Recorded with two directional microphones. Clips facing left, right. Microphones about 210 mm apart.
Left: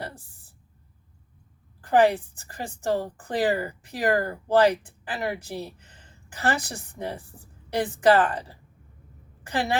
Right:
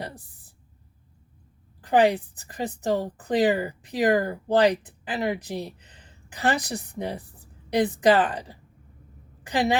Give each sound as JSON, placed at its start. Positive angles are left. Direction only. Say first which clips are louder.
{"t": 1.8, "sound": "a woman's voice", "louder": "even", "side_deg": -15}